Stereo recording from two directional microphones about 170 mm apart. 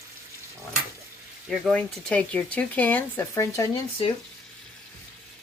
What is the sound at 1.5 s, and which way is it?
Speech, centre (ahead or behind).